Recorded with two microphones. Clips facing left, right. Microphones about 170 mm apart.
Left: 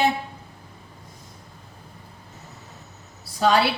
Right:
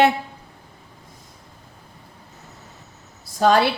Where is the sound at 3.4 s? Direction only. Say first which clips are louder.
Right 3 dB; 50° right (ahead or behind).